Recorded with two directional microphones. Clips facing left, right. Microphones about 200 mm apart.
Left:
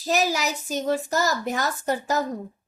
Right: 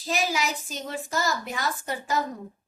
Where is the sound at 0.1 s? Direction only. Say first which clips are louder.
Left 4 dB; 40° left (ahead or behind).